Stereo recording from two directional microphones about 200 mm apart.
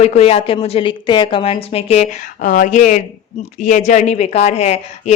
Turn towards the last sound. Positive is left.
turn(degrees=30)  # may be behind; listen again after turning